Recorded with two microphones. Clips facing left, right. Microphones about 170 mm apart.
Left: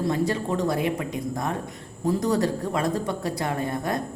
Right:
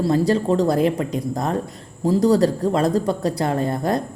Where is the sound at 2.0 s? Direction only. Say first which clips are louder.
Right 7 dB; 30° right (ahead or behind).